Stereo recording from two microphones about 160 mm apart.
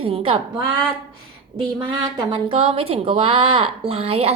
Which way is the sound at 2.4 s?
35° right (ahead or behind).